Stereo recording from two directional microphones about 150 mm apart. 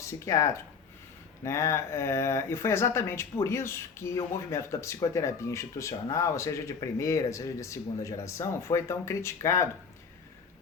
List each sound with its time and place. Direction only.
0.0 s speech: 20° left (ahead or behind)